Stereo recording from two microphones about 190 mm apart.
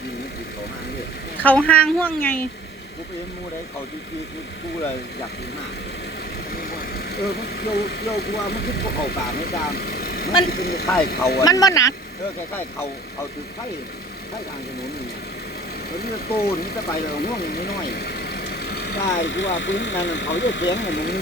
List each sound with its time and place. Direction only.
1.4 s a woman's voice: 10° left (ahead or behind)
6.5 s speech: 50° left (ahead or behind)
11.3 s a woman's voice: 20° left (ahead or behind)
16.0 s speech: 55° left (ahead or behind)